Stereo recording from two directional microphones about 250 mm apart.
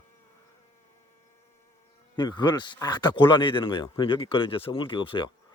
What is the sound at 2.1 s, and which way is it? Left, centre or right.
Speech, centre.